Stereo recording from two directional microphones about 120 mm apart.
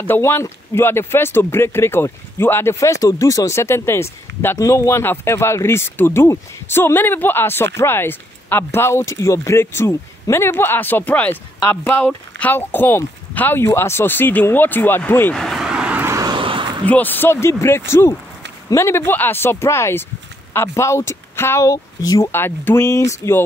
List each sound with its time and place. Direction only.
0.0 s speech: 20° left (ahead or behind)
15.3 s a sound: centre (ahead or behind)
16.0 s vehicle: 25° right (ahead or behind)
16.3 s a sound: 45° right (ahead or behind)
16.8 s speech: 15° left (ahead or behind); by 22.3 s 30° left (ahead or behind)
22.3 s speech: 20° left (ahead or behind)